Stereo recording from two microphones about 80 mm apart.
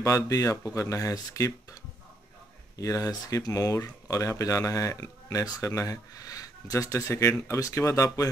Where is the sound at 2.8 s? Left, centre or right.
Left.